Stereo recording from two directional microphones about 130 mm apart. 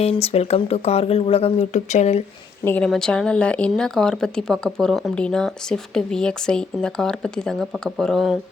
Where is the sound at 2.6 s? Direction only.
10° left (ahead or behind).